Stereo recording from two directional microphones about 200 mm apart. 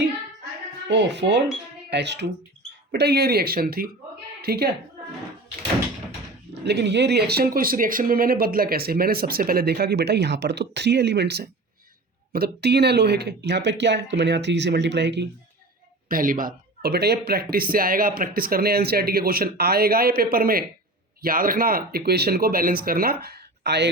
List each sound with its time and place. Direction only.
0.9 s a woman's voice: 60° right (ahead or behind)
6.5 s speech: 55° right (ahead or behind)
16.0 s speech: 45° right (ahead or behind)
23.2 s a sound: 55° right (ahead or behind)